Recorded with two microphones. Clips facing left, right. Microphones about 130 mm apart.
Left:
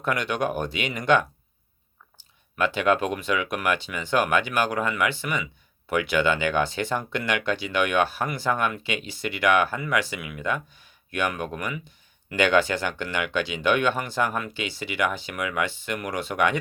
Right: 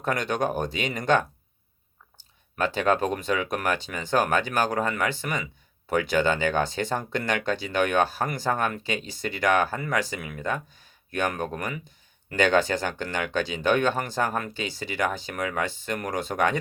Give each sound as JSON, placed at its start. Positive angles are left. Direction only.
{"t": 0.0, "sound": "speech", "side_deg": -45}
{"t": 2.6, "sound": "speech", "side_deg": -40}